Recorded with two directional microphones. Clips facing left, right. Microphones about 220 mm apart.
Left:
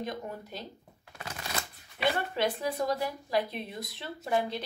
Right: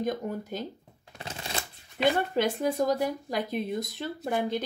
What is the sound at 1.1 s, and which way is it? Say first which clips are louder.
Shuffling cards: right 2 dB; 25° right (ahead or behind).